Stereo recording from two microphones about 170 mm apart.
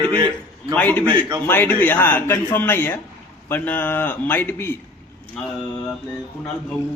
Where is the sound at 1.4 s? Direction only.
10° left (ahead or behind).